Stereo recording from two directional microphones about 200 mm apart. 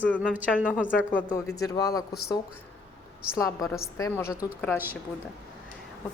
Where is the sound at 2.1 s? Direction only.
50° left (ahead or behind).